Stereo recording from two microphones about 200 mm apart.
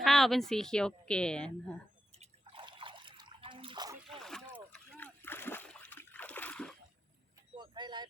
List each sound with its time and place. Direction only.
0.0 s a woman's voice: centre (ahead or behind)
2.1 s water: 25° right (ahead or behind)
4.1 s boat: centre (ahead or behind)
4.7 s splash: 10° left (ahead or behind)
7.5 s vehicle: 20° right (ahead or behind)